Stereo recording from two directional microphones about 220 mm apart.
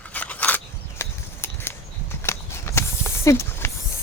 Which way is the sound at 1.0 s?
10° left (ahead or behind).